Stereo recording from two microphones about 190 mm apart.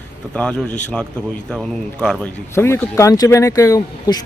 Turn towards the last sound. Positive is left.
turn(degrees=15)  # may be behind; listen again after turning